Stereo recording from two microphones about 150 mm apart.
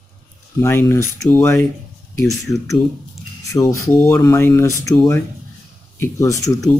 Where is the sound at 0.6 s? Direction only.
15° left (ahead or behind).